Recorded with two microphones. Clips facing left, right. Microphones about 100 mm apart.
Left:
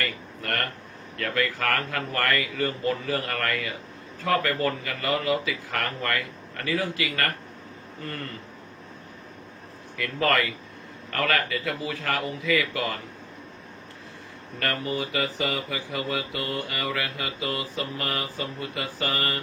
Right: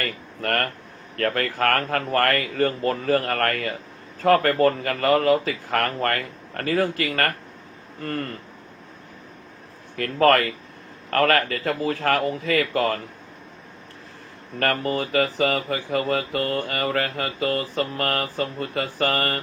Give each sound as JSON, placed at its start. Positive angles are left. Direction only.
{"t": 0.0, "sound": "speech", "side_deg": -45}
{"t": 9.9, "sound": "speech", "side_deg": -50}
{"t": 14.6, "sound": "speech", "side_deg": -50}